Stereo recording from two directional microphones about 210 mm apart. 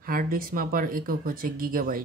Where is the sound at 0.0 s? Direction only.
45° right (ahead or behind).